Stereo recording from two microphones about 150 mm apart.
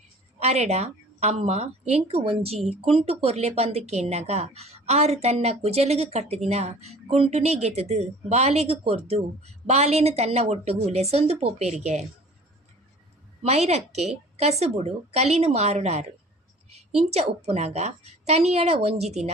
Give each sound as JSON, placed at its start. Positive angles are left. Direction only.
{"t": 0.4, "sound": "speech", "side_deg": -45}
{"t": 13.4, "sound": "speech", "side_deg": -45}
{"t": 17.1, "sound": "speech", "side_deg": -45}